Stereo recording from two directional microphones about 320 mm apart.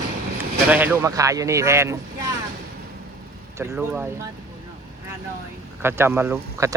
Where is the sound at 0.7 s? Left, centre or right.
Centre.